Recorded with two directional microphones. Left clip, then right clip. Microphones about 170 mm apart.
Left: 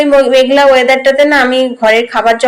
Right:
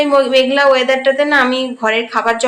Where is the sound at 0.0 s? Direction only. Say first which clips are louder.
Left 4 dB; 15° left (ahead or behind).